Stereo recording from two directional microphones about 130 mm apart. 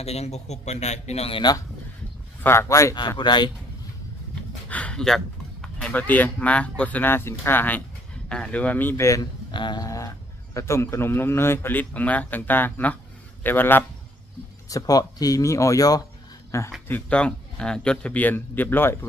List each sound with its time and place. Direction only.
0.0 s a man's voice: 55° left (ahead or behind)
1.4 s speech: 30° left (ahead or behind)
2.4 s speech: 20° left (ahead or behind)
3.2 s speech: 35° left (ahead or behind)
4.7 s a man's voice: 10° left (ahead or behind)
9.5 s a man's voice: 35° left (ahead or behind); by 13.8 s 15° left (ahead or behind)
14.7 s speech: 30° left (ahead or behind)
16.9 s a man's voice: 10° left (ahead or behind)